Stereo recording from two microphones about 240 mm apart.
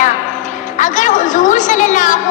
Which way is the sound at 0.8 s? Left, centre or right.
Left.